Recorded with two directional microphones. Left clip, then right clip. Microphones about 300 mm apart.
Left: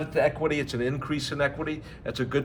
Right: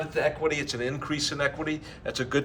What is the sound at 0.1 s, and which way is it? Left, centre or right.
A man's voice, centre.